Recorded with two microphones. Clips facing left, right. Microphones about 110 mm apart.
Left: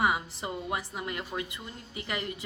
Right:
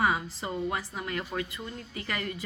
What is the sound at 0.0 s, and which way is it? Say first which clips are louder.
A woman's voice: right 1 dB; 20° left (ahead or behind).